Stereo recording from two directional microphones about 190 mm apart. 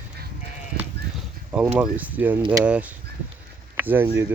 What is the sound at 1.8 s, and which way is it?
Speech, 10° right (ahead or behind).